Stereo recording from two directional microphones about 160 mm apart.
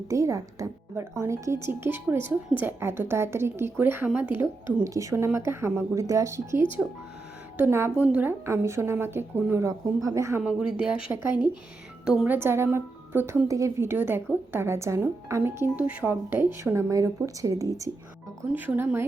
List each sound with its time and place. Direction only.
0.1 s a woman's voice: 20° right (ahead or behind)
10.4 s a woman's voice: 5° right (ahead or behind)